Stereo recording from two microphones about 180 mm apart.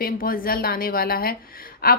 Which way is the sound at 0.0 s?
55° left (ahead or behind).